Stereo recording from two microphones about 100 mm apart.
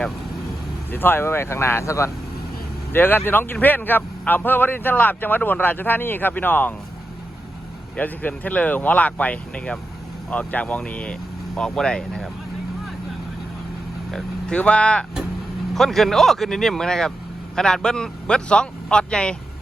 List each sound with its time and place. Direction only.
0.9 s a man's voice: 20° left (ahead or behind)
7.9 s speech: 15° left (ahead or behind)
14.1 s speech: 10° left (ahead or behind)